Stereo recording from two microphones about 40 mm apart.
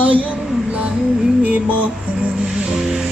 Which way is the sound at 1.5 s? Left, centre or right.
Right.